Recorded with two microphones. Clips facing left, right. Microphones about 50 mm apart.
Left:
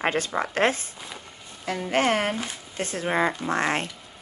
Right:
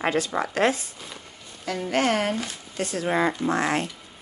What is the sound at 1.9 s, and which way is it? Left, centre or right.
Speech, left.